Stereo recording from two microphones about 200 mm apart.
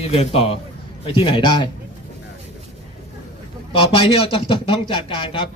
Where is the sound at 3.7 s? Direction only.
25° left (ahead or behind).